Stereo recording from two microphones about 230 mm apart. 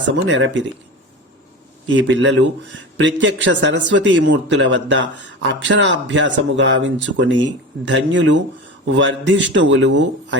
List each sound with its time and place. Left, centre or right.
0.1 s a man's voice: right
1.9 s a man's voice: right